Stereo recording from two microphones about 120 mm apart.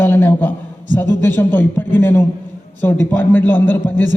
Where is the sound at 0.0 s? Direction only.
20° left (ahead or behind).